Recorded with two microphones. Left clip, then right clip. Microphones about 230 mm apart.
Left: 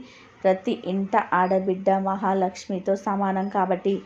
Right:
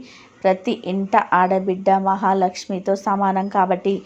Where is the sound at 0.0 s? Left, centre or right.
Centre.